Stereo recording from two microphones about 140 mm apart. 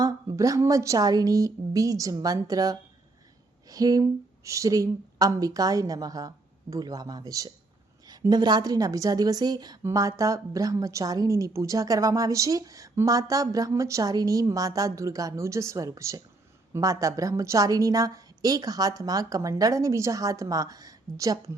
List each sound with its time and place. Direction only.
0.0 s a woman's voice: 25° right (ahead or behind)